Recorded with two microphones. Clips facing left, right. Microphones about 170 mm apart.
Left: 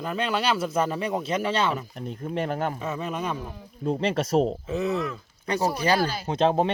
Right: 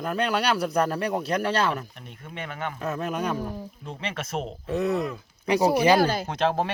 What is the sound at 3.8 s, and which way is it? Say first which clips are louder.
Speech: left 14 dB; 40° left (ahead or behind).